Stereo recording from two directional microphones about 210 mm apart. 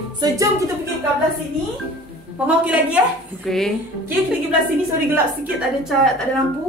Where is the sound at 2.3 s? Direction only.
5° right (ahead or behind).